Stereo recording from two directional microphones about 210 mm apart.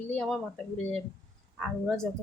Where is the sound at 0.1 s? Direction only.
5° left (ahead or behind).